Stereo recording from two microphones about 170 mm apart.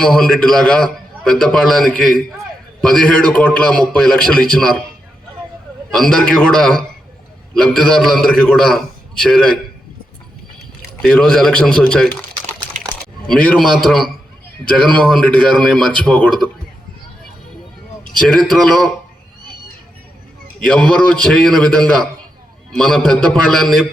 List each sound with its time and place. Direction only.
0.0 s a man's voice: 5° left (ahead or behind)
5.9 s a man's voice: 5° left (ahead or behind)
11.0 s a man's voice: 5° left (ahead or behind)
12.7 s a sound: 45° right (ahead or behind)
13.3 s a man's voice: 5° left (ahead or behind)
18.2 s a man's voice: 5° left (ahead or behind)
20.7 s a man's voice: 5° left (ahead or behind)